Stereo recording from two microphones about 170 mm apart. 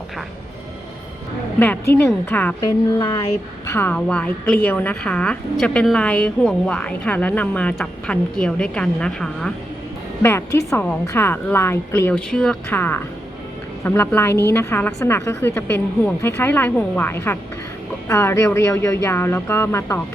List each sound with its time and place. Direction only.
1.5 s a woman's voice: 10° left (ahead or behind)
2.6 s speech: 25° left (ahead or behind)
3.7 s a woman's voice: 10° left (ahead or behind)
10.2 s a woman's voice: 15° left (ahead or behind)